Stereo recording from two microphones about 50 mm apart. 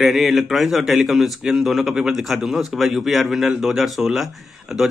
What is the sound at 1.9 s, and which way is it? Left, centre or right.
Speech, centre.